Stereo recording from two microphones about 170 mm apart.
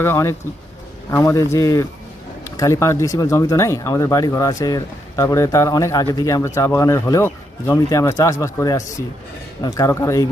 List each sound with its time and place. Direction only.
0.0 s speech: 15° left (ahead or behind)